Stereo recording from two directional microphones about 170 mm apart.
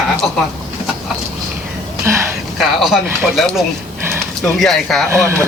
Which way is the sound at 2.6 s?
Centre (ahead or behind).